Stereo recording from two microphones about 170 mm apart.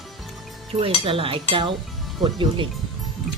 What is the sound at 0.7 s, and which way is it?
Speech, 35° right (ahead or behind).